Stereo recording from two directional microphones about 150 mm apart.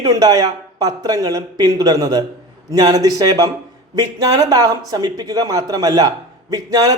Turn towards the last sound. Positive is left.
turn(degrees=-25)  # may be behind; listen again after turning